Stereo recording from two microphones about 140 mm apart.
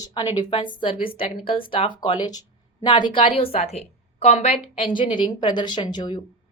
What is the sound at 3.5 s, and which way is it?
A woman's voice, 50° left (ahead or behind).